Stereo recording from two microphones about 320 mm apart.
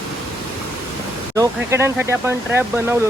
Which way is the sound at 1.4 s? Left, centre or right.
Centre.